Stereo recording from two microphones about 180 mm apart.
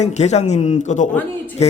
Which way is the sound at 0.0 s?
40° left (ahead or behind).